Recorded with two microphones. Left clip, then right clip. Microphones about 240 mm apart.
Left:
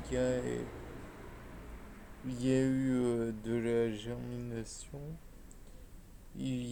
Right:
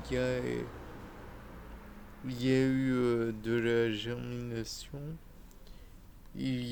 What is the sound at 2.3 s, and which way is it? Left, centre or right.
Speech, right.